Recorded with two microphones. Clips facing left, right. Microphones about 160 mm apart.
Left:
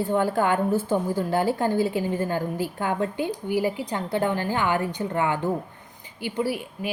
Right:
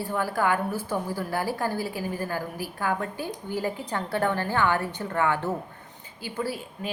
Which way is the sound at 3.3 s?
10° left (ahead or behind).